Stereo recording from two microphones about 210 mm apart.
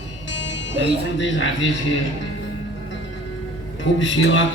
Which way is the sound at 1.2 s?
60° left (ahead or behind).